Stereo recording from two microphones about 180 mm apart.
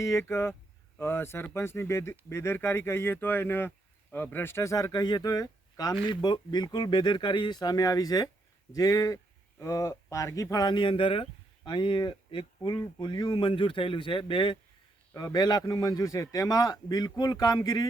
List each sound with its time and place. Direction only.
0.0 s speech: 15° left (ahead or behind)